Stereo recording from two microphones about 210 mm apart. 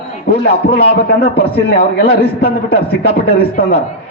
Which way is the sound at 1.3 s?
50° left (ahead or behind).